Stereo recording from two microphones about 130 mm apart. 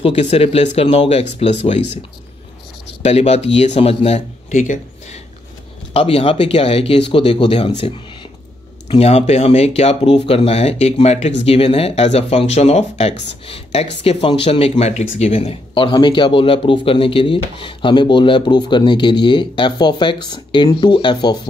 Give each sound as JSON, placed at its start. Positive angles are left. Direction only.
{"t": 0.0, "sound": "speech", "side_deg": 50}
{"t": 3.0, "sound": "speech", "side_deg": 55}
{"t": 5.9, "sound": "speech", "side_deg": 50}